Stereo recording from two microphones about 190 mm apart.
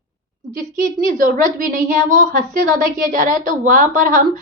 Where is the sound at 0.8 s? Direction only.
45° right (ahead or behind).